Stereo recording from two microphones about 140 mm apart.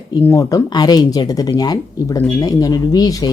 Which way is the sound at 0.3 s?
25° left (ahead or behind).